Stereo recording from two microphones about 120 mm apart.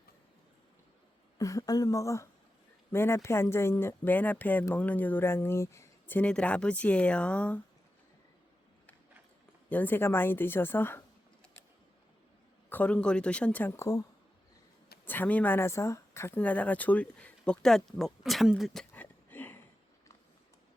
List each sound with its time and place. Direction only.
1.4 s speech: 30° left (ahead or behind); by 7.6 s 10° left (ahead or behind)
9.6 s speech: 15° left (ahead or behind)
12.7 s speech: 10° left (ahead or behind); by 14.0 s 25° left (ahead or behind)
15.0 s speech: 15° left (ahead or behind)